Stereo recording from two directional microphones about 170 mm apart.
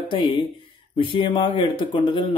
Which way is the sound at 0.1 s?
30° left (ahead or behind).